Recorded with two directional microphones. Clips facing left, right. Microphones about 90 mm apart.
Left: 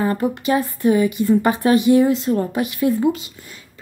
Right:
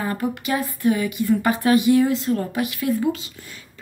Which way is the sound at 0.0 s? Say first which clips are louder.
Left 5 dB; 25° left (ahead or behind).